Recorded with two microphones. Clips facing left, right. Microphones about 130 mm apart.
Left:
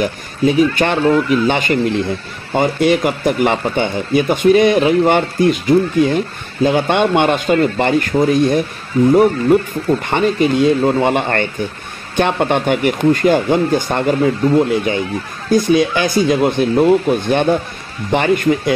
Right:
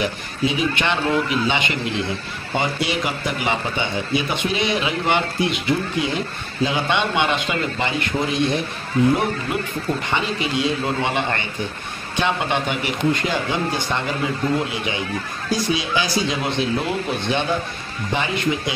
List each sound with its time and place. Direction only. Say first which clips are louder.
0.0 s speech: left 7 dB; 45° left (ahead or behind)
10.0 s speech: left 9 dB; 50° left (ahead or behind)